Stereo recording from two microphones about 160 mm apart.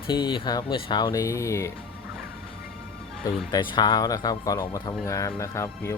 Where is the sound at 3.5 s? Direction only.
30° left (ahead or behind).